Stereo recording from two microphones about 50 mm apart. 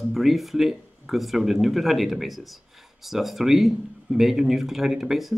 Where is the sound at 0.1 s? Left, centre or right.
Centre.